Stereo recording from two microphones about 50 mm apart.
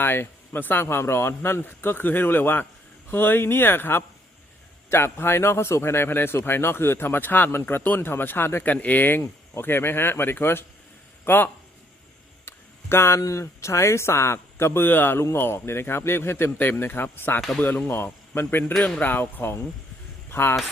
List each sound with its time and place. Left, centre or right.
0.0 s speech: left
8.6 s speech: left
12.5 s speech: left
14.8 s speech: left
17.6 s speech: left
17.8 s a man's voice: left
18.9 s speech: left